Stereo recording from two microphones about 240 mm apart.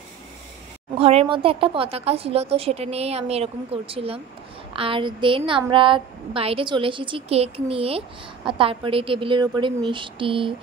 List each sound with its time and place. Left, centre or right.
0.9 s speech: right